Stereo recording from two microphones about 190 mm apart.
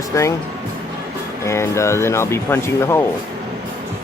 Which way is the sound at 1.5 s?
15° left (ahead or behind).